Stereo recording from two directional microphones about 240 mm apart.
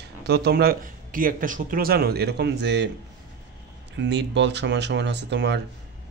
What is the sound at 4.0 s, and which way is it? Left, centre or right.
Speech, right.